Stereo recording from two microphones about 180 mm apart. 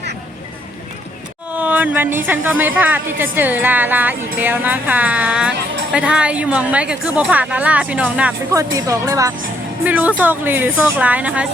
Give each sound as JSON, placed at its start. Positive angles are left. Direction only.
{"t": 1.5, "sound": "a woman's voice", "side_deg": -10}
{"t": 8.5, "sound": "a woman's voice", "side_deg": -20}